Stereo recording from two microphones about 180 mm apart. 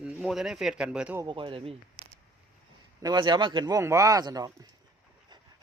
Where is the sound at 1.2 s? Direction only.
25° right (ahead or behind).